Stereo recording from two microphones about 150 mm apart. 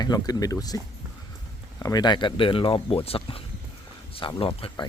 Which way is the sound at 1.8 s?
25° left (ahead or behind).